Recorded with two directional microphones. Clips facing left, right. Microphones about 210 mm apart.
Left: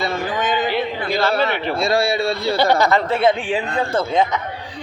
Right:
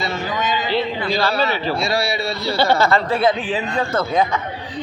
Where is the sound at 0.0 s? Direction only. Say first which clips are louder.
Left 2 dB; 55° left (ahead or behind).